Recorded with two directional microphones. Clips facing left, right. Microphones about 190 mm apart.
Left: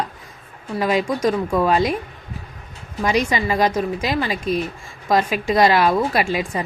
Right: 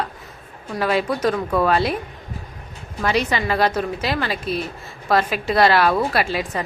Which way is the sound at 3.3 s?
10° left (ahead or behind).